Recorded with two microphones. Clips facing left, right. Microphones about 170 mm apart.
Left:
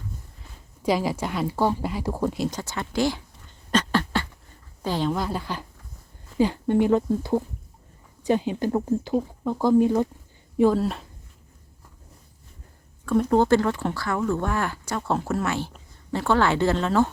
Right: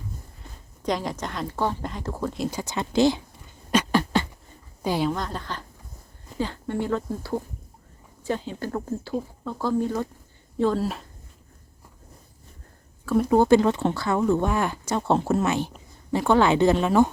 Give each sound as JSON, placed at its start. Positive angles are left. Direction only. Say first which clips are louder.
{"t": 0.8, "sound": "speech", "louder": "left 4 dB", "side_deg": 5}
{"t": 2.5, "sound": "a sound", "louder": "right 2 dB", "side_deg": -15}
{"t": 4.8, "sound": "a woman's voice", "louder": "right 1 dB", "side_deg": -10}
{"t": 5.1, "sound": "speech", "louder": "left 3 dB", "side_deg": 5}
{"t": 10.8, "sound": "speech", "louder": "left 2 dB", "side_deg": 0}
{"t": 13.1, "sound": "speech", "louder": "right 1 dB", "side_deg": -5}